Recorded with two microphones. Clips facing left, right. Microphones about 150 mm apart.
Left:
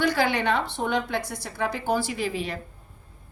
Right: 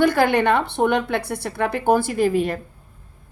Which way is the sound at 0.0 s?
50° right (ahead or behind).